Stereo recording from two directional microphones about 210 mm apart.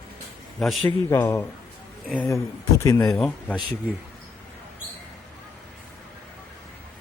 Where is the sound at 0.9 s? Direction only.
10° left (ahead or behind).